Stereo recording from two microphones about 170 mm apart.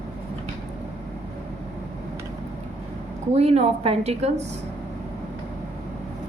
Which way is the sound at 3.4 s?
40° right (ahead or behind).